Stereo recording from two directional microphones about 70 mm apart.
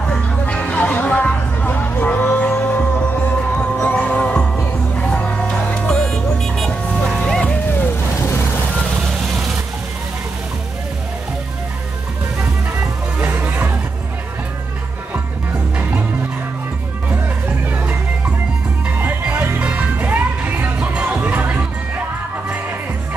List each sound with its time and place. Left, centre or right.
0.0 s music: centre
8.1 s vehicle: left
13.4 s music: right
17.1 s music: right
18.9 s music: right